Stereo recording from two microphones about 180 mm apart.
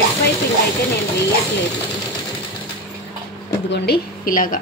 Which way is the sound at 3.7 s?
55° left (ahead or behind).